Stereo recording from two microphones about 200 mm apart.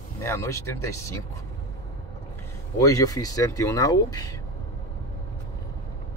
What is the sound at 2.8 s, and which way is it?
Speech, 15° left (ahead or behind).